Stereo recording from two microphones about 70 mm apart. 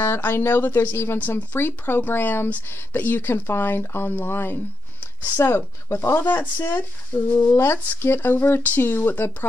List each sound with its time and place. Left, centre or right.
0.0 s speech: left
7.5 s speech: left